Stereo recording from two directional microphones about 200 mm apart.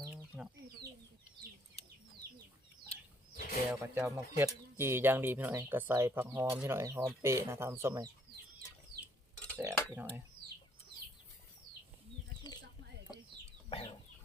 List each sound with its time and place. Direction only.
2.9 s bird flight: 40° left (ahead or behind)
3.8 s speech: 10° right (ahead or behind)
9.6 s speech: 15° right (ahead or behind)
13.7 s chicken: 30° left (ahead or behind)